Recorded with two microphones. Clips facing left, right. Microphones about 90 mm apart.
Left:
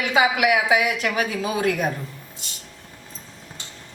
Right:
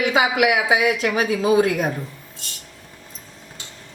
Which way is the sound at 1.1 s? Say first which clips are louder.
Right 7 dB; 30° right (ahead or behind).